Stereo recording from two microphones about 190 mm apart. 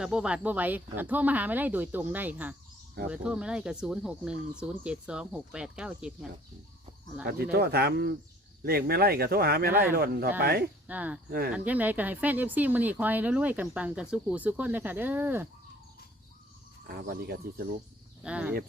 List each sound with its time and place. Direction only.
0.0 s speech: 5° right (ahead or behind)
7.5 s speech: 55° right (ahead or behind)
10.8 s speech: 10° right (ahead or behind)
11.3 s speech: 55° right (ahead or behind)
11.5 s speech: 10° right (ahead or behind)
16.8 s speech: 55° right (ahead or behind)
18.2 s speech: 5° right (ahead or behind)